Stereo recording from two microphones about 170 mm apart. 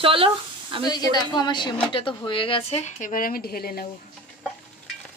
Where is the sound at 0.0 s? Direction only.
30° right (ahead or behind).